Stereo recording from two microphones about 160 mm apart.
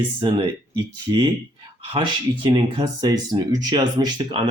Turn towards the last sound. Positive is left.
turn(degrees=-25)  # may be behind; listen again after turning